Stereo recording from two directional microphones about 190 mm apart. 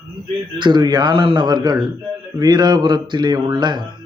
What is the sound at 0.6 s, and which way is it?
A man's voice, 25° right (ahead or behind).